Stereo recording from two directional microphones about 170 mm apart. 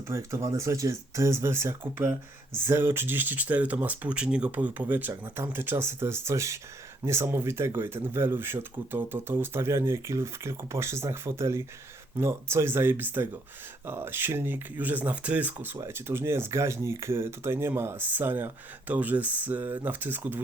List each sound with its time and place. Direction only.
0.1 s speech: 15° right (ahead or behind)